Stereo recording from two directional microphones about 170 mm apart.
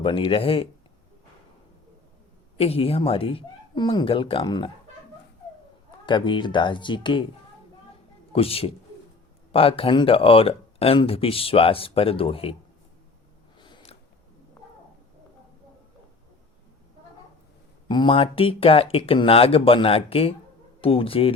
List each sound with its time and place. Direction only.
0.0 s speech: 30° left (ahead or behind)
2.6 s speech: 35° left (ahead or behind)
6.1 s speech: 30° left (ahead or behind)
8.3 s a man's voice: 35° left (ahead or behind)
13.6 s a sound: 25° left (ahead or behind)
17.8 s speech: 30° left (ahead or behind)